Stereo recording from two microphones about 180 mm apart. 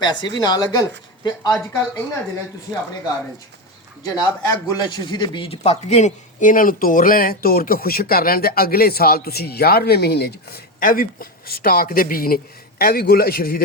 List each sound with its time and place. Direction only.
0.0 s speech: 25° left (ahead or behind)
4.0 s a man's voice: 20° left (ahead or behind); by 13.6 s 55° left (ahead or behind)